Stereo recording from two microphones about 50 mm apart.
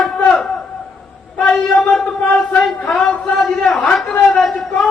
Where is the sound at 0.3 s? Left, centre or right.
Centre.